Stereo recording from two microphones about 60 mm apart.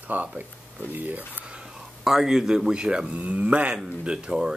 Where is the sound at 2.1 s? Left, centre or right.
Centre.